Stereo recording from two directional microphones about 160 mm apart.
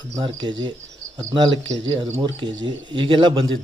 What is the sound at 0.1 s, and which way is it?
Speech, 25° right (ahead or behind).